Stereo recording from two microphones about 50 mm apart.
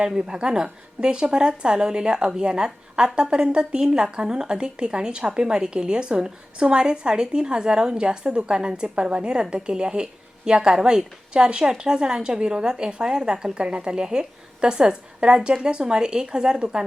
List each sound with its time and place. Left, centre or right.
0.0 s a woman's voice: centre